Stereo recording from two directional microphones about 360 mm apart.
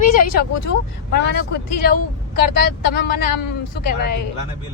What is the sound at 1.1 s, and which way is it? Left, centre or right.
Speech, left.